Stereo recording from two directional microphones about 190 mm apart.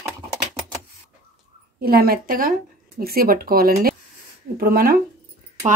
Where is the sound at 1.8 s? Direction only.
50° right (ahead or behind).